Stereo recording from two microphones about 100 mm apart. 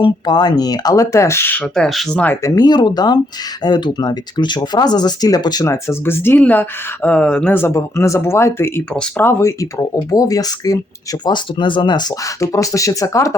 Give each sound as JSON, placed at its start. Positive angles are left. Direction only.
{"t": 0.0, "sound": "speech", "side_deg": 45}
{"t": 1.7, "sound": "speech", "side_deg": 5}
{"t": 2.1, "sound": "speech", "side_deg": 20}
{"t": 2.4, "sound": "speech", "side_deg": 40}
{"t": 5.6, "sound": "speech", "side_deg": 25}
{"t": 7.5, "sound": "speech", "side_deg": 25}
{"t": 9.4, "sound": "speech", "side_deg": 30}
{"t": 11.3, "sound": "speech", "side_deg": 50}
{"t": 12.4, "sound": "speech", "side_deg": 35}